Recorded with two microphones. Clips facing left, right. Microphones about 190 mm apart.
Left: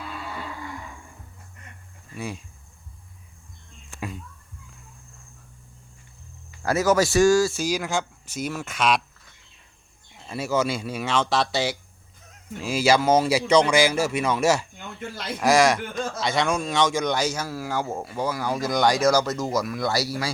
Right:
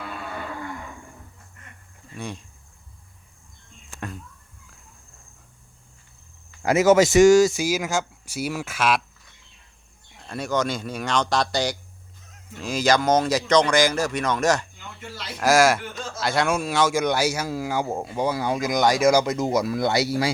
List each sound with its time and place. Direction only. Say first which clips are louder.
0.0 s livestock: right 1 dB; 55° right (ahead or behind)
2.1 s speech: left 1 dB; 5° left (ahead or behind)
6.6 s speech: right 4 dB; 20° right (ahead or behind)
10.2 s speech: left 1 dB; 5° left (ahead or behind); by 18.7 s 20° right (ahead or behind)
18.8 s speech: right 2 dB; 10° right (ahead or behind); by 20.3 s 25° right (ahead or behind)